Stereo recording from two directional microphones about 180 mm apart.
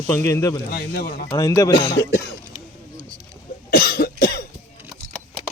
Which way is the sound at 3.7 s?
55° left (ahead or behind).